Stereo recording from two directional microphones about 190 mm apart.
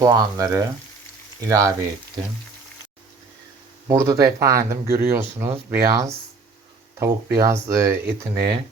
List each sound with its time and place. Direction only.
0.0 s speech: 15° right (ahead or behind)
3.8 s speech: 15° right (ahead or behind)